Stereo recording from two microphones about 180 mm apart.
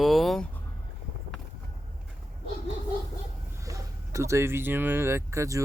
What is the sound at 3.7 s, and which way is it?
Speech, 15° right (ahead or behind).